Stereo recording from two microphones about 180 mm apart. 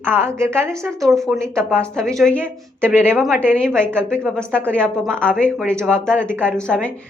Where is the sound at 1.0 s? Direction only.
Centre (ahead or behind).